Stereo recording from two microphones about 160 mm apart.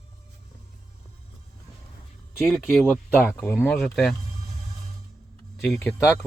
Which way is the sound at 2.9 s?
10° left (ahead or behind).